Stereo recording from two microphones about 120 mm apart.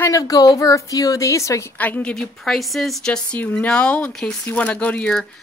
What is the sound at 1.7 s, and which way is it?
A woman's voice, 15° left (ahead or behind).